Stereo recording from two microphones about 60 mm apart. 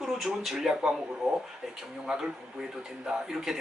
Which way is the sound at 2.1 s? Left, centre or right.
Centre.